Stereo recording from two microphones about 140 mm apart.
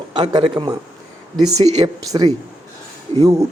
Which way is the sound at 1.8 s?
30° right (ahead or behind).